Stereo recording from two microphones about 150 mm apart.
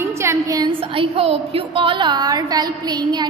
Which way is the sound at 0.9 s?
40° right (ahead or behind).